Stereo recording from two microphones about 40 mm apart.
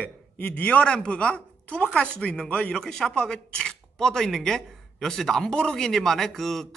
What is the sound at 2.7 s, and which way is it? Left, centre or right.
Speech, centre.